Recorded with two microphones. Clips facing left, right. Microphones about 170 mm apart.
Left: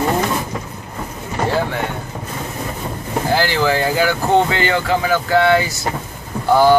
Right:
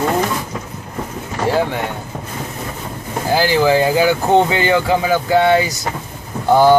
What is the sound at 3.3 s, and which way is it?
Speech, 15° right (ahead or behind).